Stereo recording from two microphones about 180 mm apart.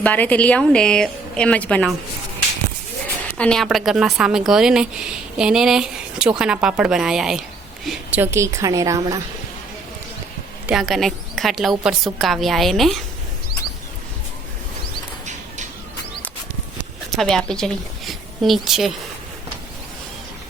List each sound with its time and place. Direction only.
0.0 s a woman's voice: 10° left (ahead or behind)
3.3 s a woman's voice: 5° left (ahead or behind); by 9.2 s 20° right (ahead or behind)
10.7 s speech: centre (ahead or behind)
17.1 s a woman's voice: centre (ahead or behind)